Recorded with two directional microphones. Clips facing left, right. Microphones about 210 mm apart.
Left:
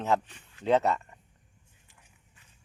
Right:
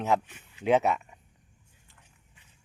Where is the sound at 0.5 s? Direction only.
10° right (ahead or behind).